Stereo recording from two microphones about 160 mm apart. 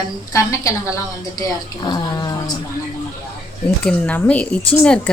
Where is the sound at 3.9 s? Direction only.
10° left (ahead or behind).